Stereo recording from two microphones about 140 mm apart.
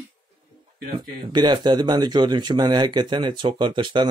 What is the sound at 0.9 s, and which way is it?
Speech, 30° right (ahead or behind).